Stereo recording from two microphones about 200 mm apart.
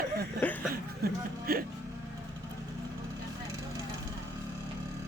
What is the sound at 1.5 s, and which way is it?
Music, 50° right (ahead or behind).